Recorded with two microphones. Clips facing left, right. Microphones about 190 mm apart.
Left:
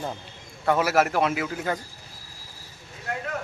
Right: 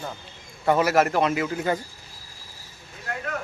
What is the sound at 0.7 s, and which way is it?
A man's voice, centre (ahead or behind).